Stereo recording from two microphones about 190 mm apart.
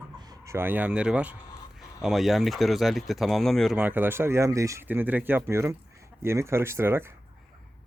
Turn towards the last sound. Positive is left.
turn(degrees=-10)  # may be behind; listen again after turning